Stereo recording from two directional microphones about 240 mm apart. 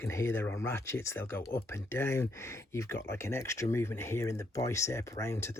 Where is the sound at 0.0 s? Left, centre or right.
Centre.